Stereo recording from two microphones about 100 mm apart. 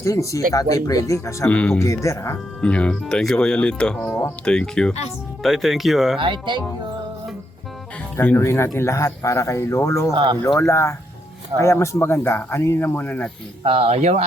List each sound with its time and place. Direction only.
0.0 s speech: 30° left (ahead or behind)
1.5 s speech: 15° left (ahead or behind)
1.8 s speech: 30° left (ahead or behind)
2.6 s speech: 10° left (ahead or behind)
6.1 s speech: 55° right (ahead or behind)
8.1 s speech: 25° left (ahead or behind)
10.1 s speech: 55° right (ahead or behind)
10.7 s speech: 30° left (ahead or behind)
13.7 s speech: 70° right (ahead or behind); by 14.3 s 90° right